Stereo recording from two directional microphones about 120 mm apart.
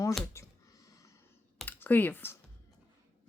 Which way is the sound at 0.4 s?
25° left (ahead or behind).